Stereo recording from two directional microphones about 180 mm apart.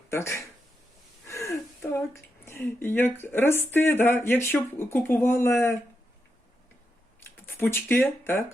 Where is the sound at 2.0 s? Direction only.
15° left (ahead or behind).